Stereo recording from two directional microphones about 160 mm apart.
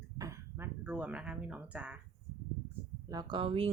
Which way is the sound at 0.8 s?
10° right (ahead or behind).